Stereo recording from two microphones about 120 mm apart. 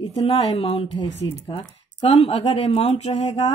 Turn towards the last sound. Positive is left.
turn(degrees=70)  # may be behind; listen again after turning